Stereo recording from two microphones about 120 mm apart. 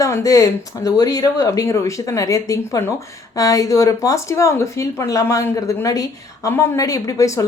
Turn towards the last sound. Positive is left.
turn(degrees=25)  # may be behind; listen again after turning